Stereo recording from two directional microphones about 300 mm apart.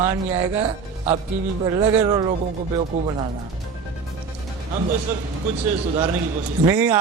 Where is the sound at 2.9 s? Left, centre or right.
Right.